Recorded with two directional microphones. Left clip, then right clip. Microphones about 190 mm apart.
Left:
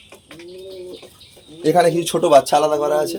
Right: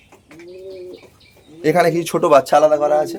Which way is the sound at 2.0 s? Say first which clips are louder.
Even; 15° right (ahead or behind).